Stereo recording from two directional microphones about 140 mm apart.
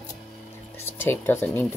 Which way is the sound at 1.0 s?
15° left (ahead or behind).